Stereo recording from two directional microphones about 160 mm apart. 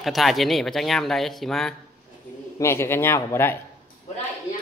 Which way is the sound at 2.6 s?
15° left (ahead or behind).